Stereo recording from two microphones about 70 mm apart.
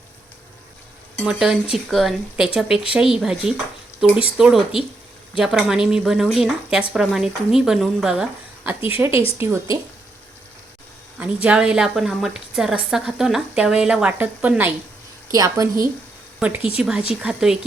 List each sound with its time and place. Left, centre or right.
1.2 s a woman's voice: centre
9.0 s a woman's voice: right
11.2 s a woman's voice: centre
14.1 s a woman's voice: right
15.4 s a woman's voice: right
16.4 s a woman's voice: right
16.7 s a woman's voice: centre